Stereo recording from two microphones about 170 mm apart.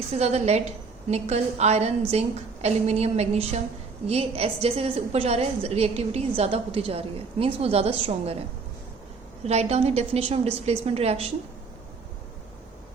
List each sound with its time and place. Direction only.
0.2 s a woman's voice: 40° right (ahead or behind)
9.4 s a woman's voice: 40° right (ahead or behind)